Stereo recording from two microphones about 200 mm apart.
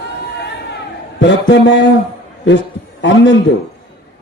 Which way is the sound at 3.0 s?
65° left (ahead or behind).